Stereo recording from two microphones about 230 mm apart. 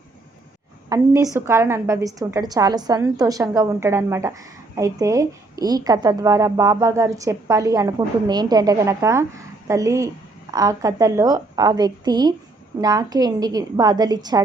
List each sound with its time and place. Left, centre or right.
0.9 s a woman's voice: centre